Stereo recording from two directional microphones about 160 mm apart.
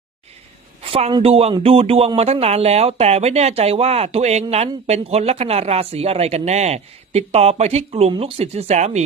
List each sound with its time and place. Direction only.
0.8 s a man's voice: 35° right (ahead or behind)